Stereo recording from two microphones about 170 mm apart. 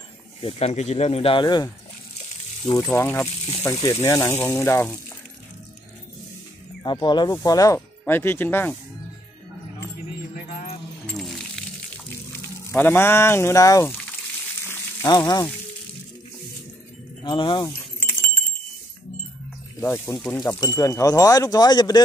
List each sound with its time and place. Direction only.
0.4 s speech: 35° left (ahead or behind)
2.9 s speech: 10° left (ahead or behind)
6.8 s speech: 25° left (ahead or behind)
10.3 s keys jangling: 50° left (ahead or behind)
11.1 s coin: centre (ahead or behind)
12.4 s speech: 15° left (ahead or behind)
14.7 s frying: 20° left (ahead or behind)
17.2 s speech: 30° left (ahead or behind)
19.8 s speech: 15° left (ahead or behind)
20.2 s speech: centre (ahead or behind)
20.4 s speech: 20° left (ahead or behind)